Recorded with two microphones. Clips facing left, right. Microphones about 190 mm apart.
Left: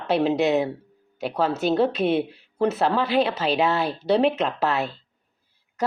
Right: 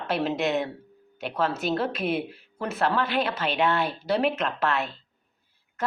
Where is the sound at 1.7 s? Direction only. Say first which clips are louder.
Left 6 dB; 25° left (ahead or behind).